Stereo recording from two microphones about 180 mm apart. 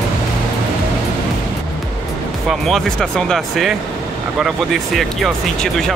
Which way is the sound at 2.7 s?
Centre (ahead or behind).